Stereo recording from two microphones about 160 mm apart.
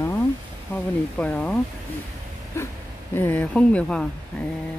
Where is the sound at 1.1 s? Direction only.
5° left (ahead or behind).